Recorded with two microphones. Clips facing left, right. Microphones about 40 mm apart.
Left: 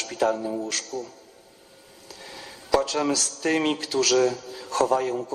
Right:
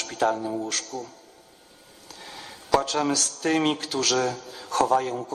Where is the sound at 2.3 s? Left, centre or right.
Right.